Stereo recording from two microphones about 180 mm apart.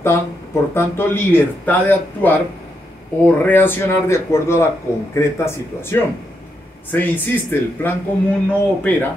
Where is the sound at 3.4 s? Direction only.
10° left (ahead or behind).